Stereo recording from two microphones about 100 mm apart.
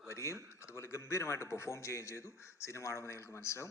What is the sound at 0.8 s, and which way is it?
A man's voice, 25° left (ahead or behind).